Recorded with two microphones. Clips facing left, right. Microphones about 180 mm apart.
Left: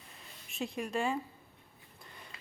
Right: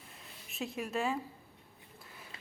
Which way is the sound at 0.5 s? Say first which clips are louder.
Left 1 dB; centre (ahead or behind).